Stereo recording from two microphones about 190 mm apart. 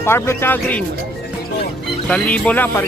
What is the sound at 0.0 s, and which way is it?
Speech, 15° left (ahead or behind).